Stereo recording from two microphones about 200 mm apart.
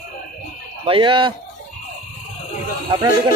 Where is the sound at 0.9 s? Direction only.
25° right (ahead or behind).